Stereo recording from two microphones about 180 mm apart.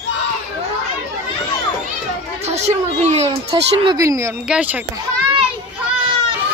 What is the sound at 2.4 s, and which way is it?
A child's voice, 35° right (ahead or behind).